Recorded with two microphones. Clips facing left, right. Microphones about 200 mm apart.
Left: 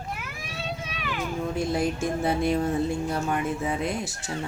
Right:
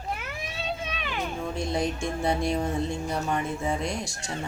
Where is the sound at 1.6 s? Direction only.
5° left (ahead or behind).